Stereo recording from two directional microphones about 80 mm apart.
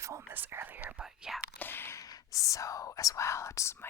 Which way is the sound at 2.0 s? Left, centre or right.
Left.